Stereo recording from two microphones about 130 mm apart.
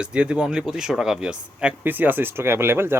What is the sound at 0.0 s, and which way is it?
Speech, 10° right (ahead or behind).